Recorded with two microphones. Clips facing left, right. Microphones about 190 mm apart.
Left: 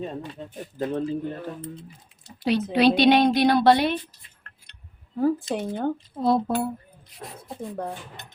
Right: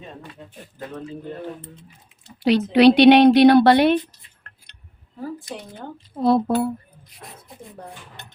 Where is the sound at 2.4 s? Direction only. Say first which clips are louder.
Right 6 dB; 70° right (ahead or behind).